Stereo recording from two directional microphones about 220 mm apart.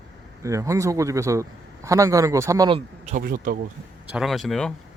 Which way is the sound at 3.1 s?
40° right (ahead or behind).